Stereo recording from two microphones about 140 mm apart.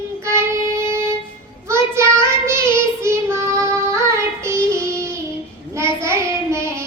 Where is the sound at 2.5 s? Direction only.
20° right (ahead or behind).